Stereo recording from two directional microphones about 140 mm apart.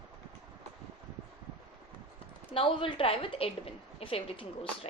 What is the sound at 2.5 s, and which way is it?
A woman's voice, 40° left (ahead or behind).